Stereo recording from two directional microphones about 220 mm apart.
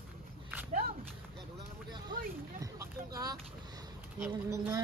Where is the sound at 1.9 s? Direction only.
20° right (ahead or behind).